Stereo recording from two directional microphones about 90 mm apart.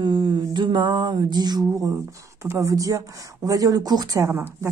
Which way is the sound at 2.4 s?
35° right (ahead or behind).